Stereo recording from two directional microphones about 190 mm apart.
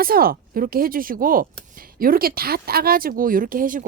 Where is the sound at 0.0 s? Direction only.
50° right (ahead or behind).